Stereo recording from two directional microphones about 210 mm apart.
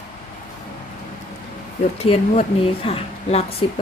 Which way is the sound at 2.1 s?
25° left (ahead or behind).